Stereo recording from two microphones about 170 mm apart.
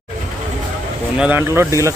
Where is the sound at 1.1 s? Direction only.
10° right (ahead or behind).